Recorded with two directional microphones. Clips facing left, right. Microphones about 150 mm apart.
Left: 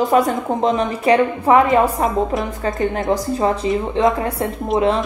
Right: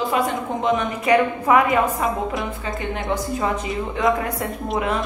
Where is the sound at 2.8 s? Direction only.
40° left (ahead or behind).